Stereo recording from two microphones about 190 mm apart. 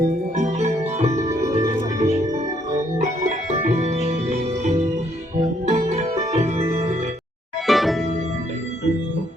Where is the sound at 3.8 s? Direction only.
35° right (ahead or behind).